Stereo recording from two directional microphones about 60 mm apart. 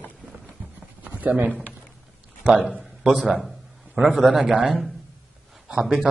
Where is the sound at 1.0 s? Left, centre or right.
Right.